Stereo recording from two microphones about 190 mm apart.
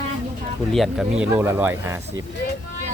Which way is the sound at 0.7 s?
Centre (ahead or behind).